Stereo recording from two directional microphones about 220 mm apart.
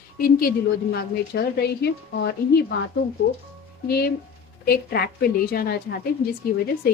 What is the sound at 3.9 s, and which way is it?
A woman's voice, 45° left (ahead or behind).